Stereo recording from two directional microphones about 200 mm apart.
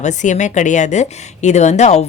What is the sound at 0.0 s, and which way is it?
A woman's voice, 35° left (ahead or behind).